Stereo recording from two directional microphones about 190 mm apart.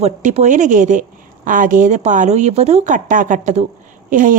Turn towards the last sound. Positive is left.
turn(degrees=-45)  # may be behind; listen again after turning